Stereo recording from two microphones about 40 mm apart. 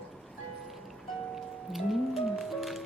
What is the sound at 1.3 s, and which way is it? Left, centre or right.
Music, centre.